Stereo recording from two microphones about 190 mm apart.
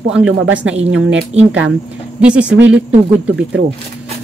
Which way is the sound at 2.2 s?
5° right (ahead or behind).